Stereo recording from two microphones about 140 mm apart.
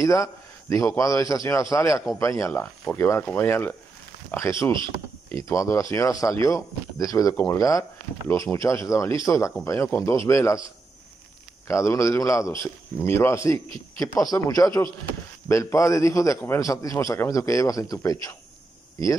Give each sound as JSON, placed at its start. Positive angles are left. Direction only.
{"t": 0.0, "sound": "a man's voice", "side_deg": 25}
{"t": 11.6, "sound": "a man's voice", "side_deg": 20}